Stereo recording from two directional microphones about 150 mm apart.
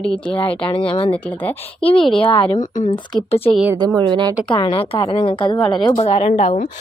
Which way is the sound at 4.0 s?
30° right (ahead or behind).